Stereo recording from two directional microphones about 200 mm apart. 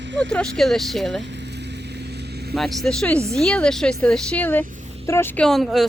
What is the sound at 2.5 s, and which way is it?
Speech, centre (ahead or behind).